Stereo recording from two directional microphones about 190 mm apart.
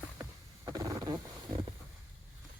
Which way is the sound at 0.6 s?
20° right (ahead or behind).